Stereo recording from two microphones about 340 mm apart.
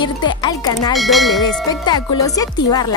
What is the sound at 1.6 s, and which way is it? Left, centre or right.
Speech, centre.